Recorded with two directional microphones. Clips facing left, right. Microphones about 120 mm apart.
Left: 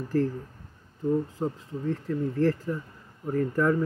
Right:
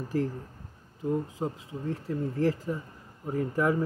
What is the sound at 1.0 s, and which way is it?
Speech, 15° right (ahead or behind).